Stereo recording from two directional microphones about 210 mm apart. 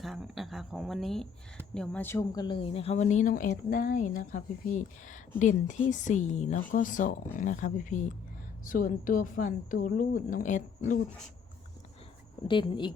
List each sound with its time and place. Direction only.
0.0 s a woman's voice: centre (ahead or behind); by 11.0 s 35° left (ahead or behind)
12.5 s speech: 20° left (ahead or behind)